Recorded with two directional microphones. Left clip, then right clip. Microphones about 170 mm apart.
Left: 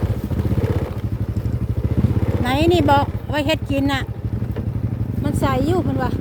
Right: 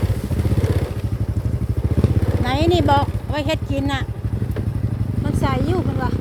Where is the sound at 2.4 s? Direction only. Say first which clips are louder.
Left 2 dB; 20° left (ahead or behind).